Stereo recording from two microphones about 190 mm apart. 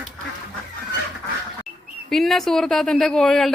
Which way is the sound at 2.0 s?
Centre (ahead or behind).